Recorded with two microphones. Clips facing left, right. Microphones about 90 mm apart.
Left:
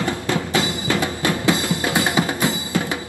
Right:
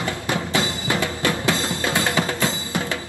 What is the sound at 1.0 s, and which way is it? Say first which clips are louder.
Music: left 1 dB; 20° left (ahead or behind).